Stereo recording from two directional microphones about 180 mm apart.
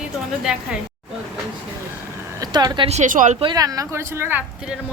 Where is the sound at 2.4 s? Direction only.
20° right (ahead or behind); by 3.3 s 45° right (ahead or behind).